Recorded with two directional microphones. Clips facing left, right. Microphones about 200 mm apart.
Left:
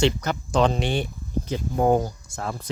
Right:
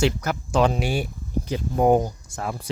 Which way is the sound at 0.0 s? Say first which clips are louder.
Left 1 dB; 5° right (ahead or behind).